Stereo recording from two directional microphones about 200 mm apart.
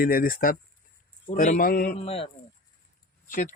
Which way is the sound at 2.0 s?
30° left (ahead or behind).